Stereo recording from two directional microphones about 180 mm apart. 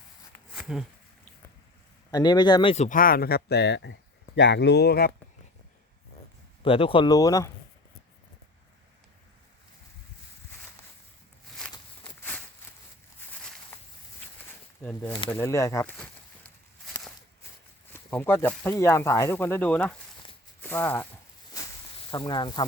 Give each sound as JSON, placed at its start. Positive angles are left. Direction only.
{"t": 0.5, "sound": "a sound", "side_deg": -5}
{"t": 2.0, "sound": "speech", "side_deg": 20}
{"t": 6.7, "sound": "speech", "side_deg": 30}
{"t": 14.8, "sound": "speech", "side_deg": 10}
{"t": 17.9, "sound": "speech", "side_deg": 10}
{"t": 22.1, "sound": "speech", "side_deg": 25}